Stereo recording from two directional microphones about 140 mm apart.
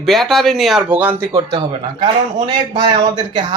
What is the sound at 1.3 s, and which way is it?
A man's voice, 30° right (ahead or behind).